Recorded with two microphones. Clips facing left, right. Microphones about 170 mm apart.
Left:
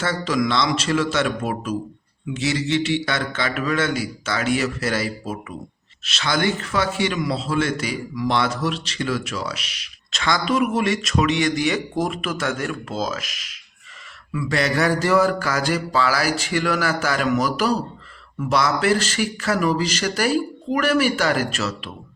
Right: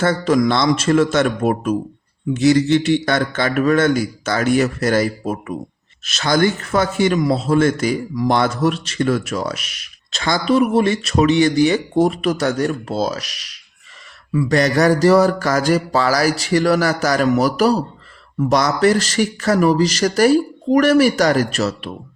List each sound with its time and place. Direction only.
0.0 s a man's voice: 50° right (ahead or behind)
10.1 s speech: 35° right (ahead or behind)